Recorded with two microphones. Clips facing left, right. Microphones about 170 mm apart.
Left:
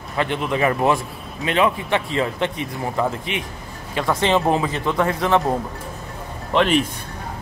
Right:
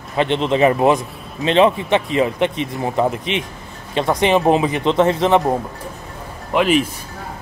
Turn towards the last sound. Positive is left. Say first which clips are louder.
# right 2 dB
turn(degrees=-5)  # may be behind; listen again after turning